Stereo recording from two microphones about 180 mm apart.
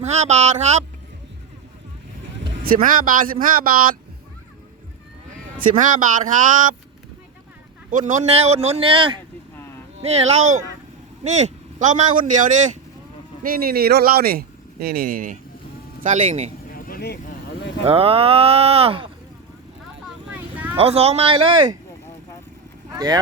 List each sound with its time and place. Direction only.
0.0 s speech: 40° right (ahead or behind)
2.6 s speech: 50° right (ahead or behind)
5.7 s speech: 45° right (ahead or behind)
7.9 s speech: 45° right (ahead or behind)
13.4 s speech: 55° right (ahead or behind)
16.7 s vehicle: 55° left (ahead or behind)
17.8 s speech: 30° right (ahead or behind)
20.1 s vehicle: 10° right (ahead or behind)
20.7 s speech: 35° right (ahead or behind)
22.9 s vehicle: 20° right (ahead or behind)